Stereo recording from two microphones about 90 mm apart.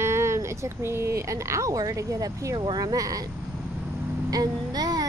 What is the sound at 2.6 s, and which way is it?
Speech, 50° right (ahead or behind).